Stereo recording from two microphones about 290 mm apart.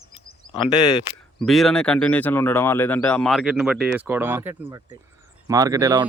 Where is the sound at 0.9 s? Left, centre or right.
Centre.